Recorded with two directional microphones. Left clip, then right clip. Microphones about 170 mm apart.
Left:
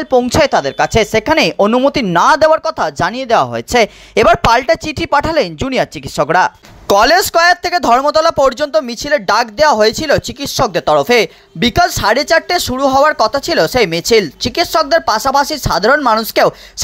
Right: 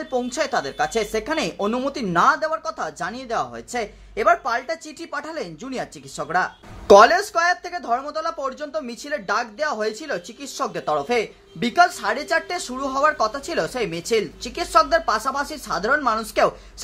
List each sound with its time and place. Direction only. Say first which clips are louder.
0.0 s speech: left 13 dB; 55° left (ahead or behind)
2.1 s speech: left 9 dB; 75° left (ahead or behind); by 16.5 s 45° left (ahead or behind)